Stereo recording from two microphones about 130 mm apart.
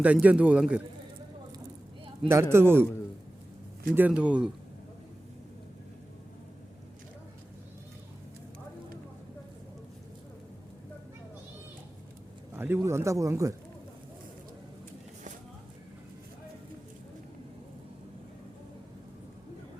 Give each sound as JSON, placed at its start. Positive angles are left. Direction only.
{"t": 0.0, "sound": "speech", "side_deg": -10}
{"t": 2.3, "sound": "a man's voice", "side_deg": -20}
{"t": 3.8, "sound": "speech", "side_deg": -10}
{"t": 12.5, "sound": "a man's voice", "side_deg": -15}